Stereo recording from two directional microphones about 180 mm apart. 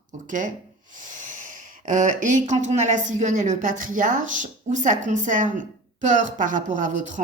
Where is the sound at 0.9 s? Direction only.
45° right (ahead or behind).